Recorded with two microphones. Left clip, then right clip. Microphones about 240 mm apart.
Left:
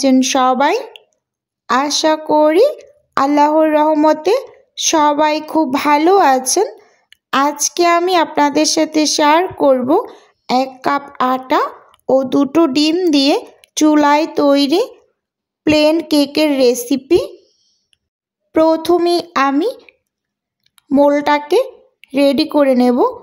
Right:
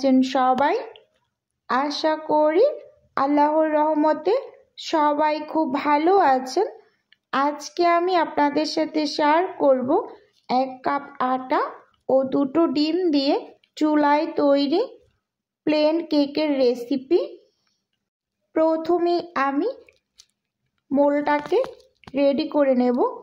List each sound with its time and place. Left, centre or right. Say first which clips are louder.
0.0 s speech: left 7 dB; left
18.5 s speech: left 8 dB; left